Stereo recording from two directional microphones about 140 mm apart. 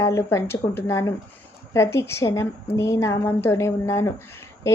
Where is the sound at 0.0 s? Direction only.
20° left (ahead or behind).